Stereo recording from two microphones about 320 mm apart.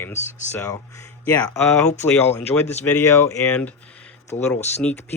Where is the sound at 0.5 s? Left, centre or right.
Centre.